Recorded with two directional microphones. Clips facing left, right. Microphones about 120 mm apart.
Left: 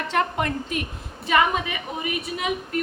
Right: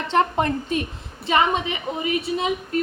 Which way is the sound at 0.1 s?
30° right (ahead or behind).